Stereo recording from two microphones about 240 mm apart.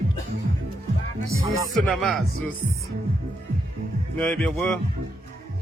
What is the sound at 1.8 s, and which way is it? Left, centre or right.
Speech, centre.